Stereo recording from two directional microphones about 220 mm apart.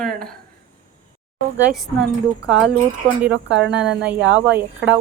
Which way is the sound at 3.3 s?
55° right (ahead or behind).